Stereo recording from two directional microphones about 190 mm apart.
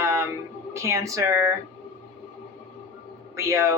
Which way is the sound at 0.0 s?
15° right (ahead or behind).